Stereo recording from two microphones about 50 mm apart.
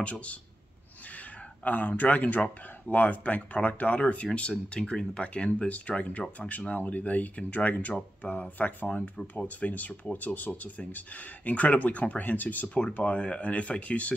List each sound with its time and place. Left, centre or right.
0.0 s speech: left
1.6 s speech: left
12.6 s speech: left